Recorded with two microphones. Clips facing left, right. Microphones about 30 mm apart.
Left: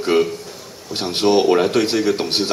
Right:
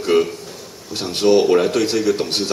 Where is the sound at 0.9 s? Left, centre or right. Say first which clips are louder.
Right 1 dB; left.